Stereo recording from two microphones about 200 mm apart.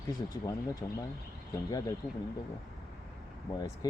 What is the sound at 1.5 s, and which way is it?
Speech, 20° left (ahead or behind).